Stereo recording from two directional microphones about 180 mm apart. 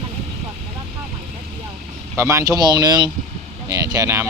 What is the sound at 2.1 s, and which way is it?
Speech, 15° right (ahead or behind).